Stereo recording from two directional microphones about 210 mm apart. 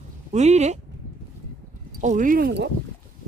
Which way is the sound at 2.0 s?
40° right (ahead or behind).